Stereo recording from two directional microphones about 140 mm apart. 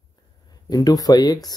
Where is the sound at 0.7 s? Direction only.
25° left (ahead or behind).